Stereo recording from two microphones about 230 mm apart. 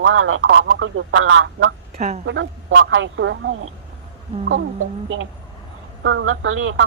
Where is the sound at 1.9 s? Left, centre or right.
Right.